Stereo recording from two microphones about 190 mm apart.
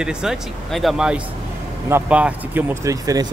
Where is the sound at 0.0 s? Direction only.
5° right (ahead or behind).